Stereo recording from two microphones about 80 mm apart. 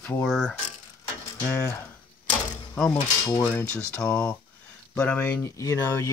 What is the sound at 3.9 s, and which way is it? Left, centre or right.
Speech, centre.